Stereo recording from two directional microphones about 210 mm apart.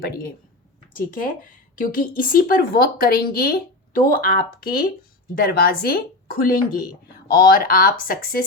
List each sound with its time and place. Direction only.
0.0 s speech: 45° left (ahead or behind)